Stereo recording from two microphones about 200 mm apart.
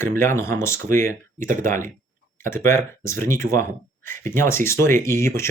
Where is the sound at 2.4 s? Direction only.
10° left (ahead or behind).